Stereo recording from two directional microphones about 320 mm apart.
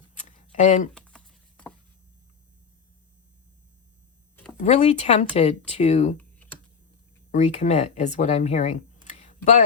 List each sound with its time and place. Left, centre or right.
0.1 s a sound: left
0.9 s a sound: centre
4.6 s speech: centre
6.1 s computer keyboard: centre
7.3 s speech: left
9.2 s tick: left